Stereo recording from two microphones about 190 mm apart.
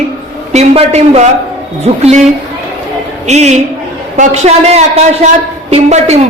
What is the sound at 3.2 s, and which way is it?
A man's voice, 35° right (ahead or behind).